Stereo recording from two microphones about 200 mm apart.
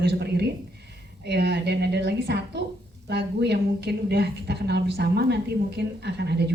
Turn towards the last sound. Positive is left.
turn(degrees=-55)  # may be behind; listen again after turning